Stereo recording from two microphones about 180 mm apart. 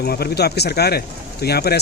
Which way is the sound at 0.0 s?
60° left (ahead or behind).